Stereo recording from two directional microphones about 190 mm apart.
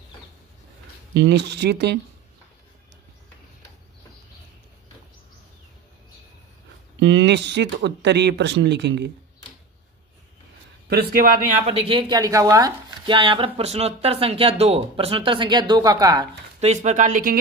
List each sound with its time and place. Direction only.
1.1 s speech: 70° right (ahead or behind)
7.0 s speech: 70° right (ahead or behind)
10.9 s speech: 50° right (ahead or behind)
11.6 s speech: 30° right (ahead or behind)
16.5 s speech: 35° right (ahead or behind)